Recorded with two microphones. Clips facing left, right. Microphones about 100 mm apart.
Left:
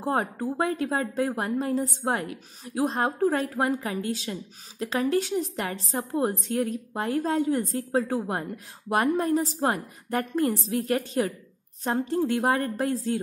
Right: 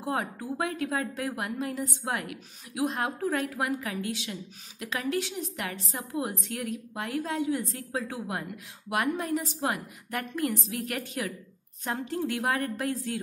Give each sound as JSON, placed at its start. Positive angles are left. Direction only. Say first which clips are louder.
{"t": 0.0, "sound": "a woman's voice", "louder": "left 5 dB", "side_deg": 40}